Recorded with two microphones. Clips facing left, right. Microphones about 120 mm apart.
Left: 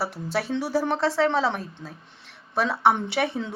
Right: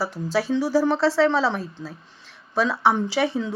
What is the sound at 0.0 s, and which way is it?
A woman's voice, 65° left (ahead or behind).